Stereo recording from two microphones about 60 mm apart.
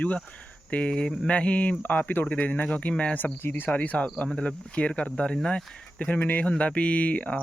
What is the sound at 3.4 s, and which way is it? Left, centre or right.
Speech, left.